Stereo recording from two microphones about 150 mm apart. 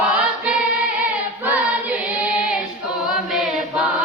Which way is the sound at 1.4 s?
10° right (ahead or behind).